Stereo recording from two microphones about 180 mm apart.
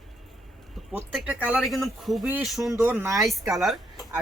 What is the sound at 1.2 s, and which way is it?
Speech, 5° right (ahead or behind).